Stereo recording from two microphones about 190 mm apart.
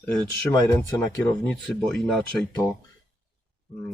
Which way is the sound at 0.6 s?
15° left (ahead or behind).